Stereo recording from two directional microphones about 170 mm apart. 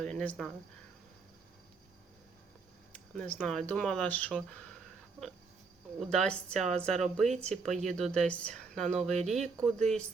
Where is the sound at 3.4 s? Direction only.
Centre (ahead or behind).